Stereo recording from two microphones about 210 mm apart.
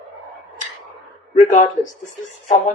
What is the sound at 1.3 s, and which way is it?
Speech, 35° left (ahead or behind).